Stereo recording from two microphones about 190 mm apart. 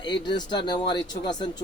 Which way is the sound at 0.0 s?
25° left (ahead or behind).